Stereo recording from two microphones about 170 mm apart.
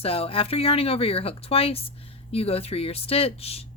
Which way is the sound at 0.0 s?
35° left (ahead or behind).